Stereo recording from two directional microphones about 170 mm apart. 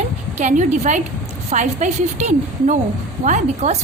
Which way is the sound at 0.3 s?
45° right (ahead or behind).